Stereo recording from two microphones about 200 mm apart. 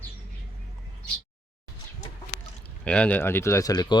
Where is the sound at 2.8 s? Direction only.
5° left (ahead or behind).